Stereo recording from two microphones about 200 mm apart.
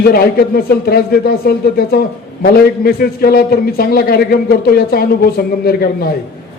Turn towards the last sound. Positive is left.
turn(degrees=50)  # may be behind; listen again after turning